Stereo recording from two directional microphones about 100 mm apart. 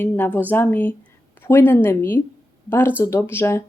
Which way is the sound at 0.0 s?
20° left (ahead or behind).